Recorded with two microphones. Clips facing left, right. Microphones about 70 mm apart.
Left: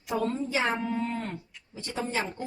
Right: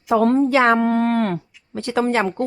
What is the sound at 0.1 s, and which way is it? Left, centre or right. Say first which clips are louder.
A woman's voice: right 13 dB; right.